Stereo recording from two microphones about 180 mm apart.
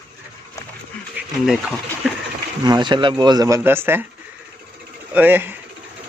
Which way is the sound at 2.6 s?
25° right (ahead or behind).